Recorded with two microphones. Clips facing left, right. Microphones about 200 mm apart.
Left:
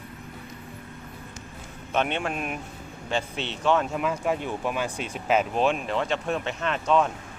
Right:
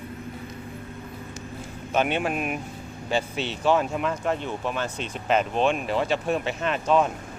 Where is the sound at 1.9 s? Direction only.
5° right (ahead or behind).